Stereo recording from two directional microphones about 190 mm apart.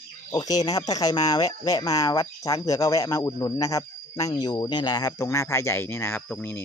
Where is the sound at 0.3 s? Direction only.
20° left (ahead or behind).